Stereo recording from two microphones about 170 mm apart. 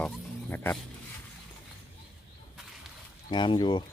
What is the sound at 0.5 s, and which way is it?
Speech, 10° left (ahead or behind).